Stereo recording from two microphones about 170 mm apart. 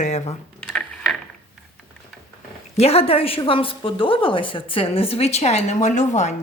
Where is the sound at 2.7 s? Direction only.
35° left (ahead or behind).